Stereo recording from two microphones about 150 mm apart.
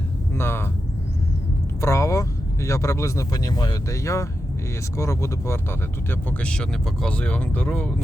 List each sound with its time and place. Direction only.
0.3 s a sound: 15° left (ahead or behind)
1.8 s speech: 20° left (ahead or behind)
6.1 s speech: 10° left (ahead or behind)